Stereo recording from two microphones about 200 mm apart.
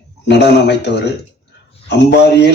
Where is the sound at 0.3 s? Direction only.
60° left (ahead or behind).